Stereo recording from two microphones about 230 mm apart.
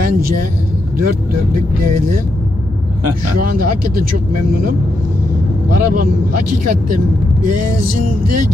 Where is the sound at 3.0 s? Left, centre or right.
Right.